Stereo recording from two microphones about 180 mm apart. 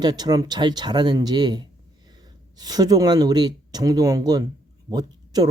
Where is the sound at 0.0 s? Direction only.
20° right (ahead or behind).